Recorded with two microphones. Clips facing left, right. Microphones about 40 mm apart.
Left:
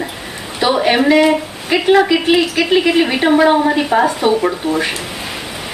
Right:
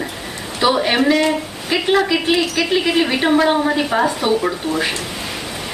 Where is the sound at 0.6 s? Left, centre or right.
Centre.